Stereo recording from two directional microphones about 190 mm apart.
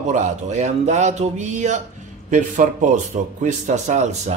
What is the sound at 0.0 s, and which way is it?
Speech, 40° right (ahead or behind).